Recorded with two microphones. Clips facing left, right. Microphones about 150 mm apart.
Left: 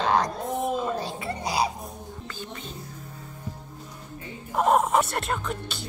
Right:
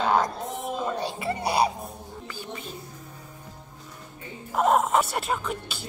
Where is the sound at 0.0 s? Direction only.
5° right (ahead or behind).